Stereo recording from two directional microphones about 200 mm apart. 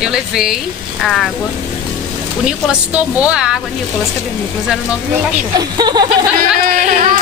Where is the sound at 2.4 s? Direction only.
5° right (ahead or behind).